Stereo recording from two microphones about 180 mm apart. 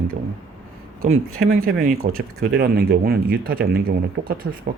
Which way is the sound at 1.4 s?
50° right (ahead or behind).